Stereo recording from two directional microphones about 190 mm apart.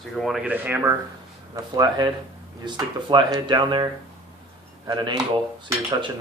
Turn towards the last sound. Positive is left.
turn(degrees=-25)  # may be behind; listen again after turning